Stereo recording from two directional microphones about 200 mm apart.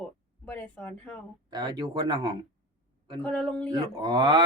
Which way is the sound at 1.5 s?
20° right (ahead or behind).